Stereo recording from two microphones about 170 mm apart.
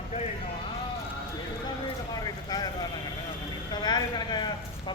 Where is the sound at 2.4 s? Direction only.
25° left (ahead or behind).